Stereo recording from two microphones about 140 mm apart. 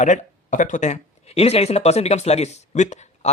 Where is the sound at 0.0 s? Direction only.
65° left (ahead or behind).